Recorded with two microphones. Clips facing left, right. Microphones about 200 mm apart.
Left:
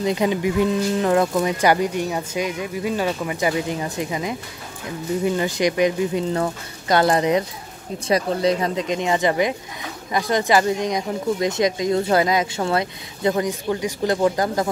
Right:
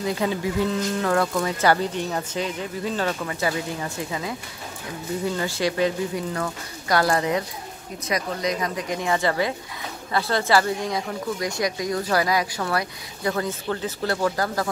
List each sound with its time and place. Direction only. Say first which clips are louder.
0.0 s speech: left 4 dB; 20° left (ahead or behind)
8.1 s speech: left 6 dB; 30° left (ahead or behind)